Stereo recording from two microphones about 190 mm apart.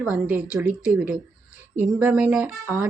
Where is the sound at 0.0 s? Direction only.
5° right (ahead or behind).